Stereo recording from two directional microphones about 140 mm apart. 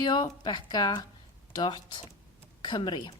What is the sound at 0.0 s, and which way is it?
Speech, 35° left (ahead or behind).